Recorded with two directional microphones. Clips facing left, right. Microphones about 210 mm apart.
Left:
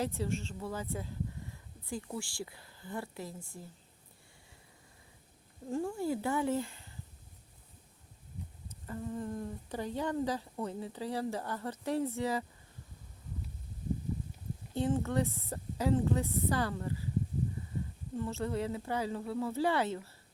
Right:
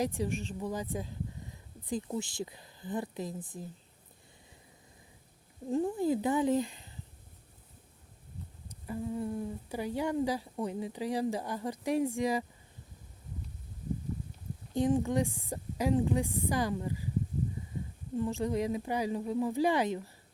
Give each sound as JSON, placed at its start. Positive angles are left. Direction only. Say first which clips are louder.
{"t": 0.0, "sound": "speech", "louder": "right 2 dB", "side_deg": -15}
{"t": 5.6, "sound": "speech", "louder": "right 4 dB", "side_deg": -20}
{"t": 8.7, "sound": "speech", "louder": "right 3 dB", "side_deg": -10}
{"t": 14.7, "sound": "speech", "louder": "right 4 dB", "side_deg": -15}
{"t": 18.2, "sound": "speech", "louder": "right 4 dB", "side_deg": -15}